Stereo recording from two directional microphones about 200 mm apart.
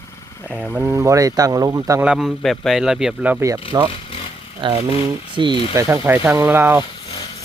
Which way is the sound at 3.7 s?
15° right (ahead or behind).